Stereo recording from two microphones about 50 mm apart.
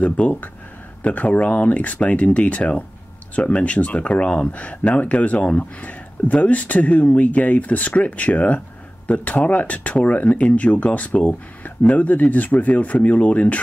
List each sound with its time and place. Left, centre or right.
0.0 s speech: left